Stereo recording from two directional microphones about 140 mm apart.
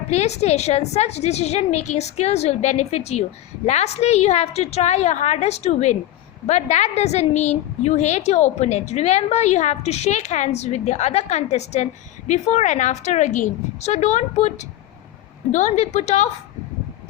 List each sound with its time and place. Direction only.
0.1 s a woman's voice: 50° left (ahead or behind)